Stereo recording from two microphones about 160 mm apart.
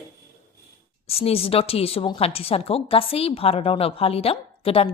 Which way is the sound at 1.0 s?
40° left (ahead or behind).